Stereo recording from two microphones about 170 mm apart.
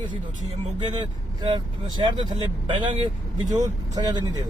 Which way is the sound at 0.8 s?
30° right (ahead or behind).